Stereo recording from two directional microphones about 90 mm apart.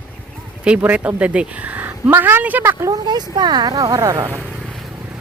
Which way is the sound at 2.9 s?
50° right (ahead or behind).